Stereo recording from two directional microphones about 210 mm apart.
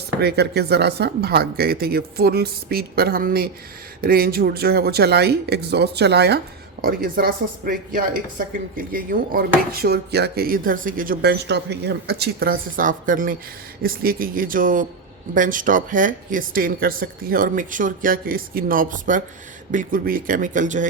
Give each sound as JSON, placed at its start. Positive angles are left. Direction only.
{"t": 0.2, "sound": "speech", "side_deg": -50}